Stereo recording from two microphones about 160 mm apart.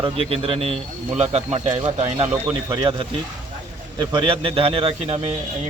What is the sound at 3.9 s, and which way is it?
A man's voice, 30° right (ahead or behind).